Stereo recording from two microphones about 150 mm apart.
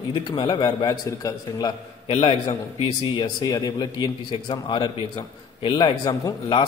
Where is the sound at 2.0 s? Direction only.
35° left (ahead or behind).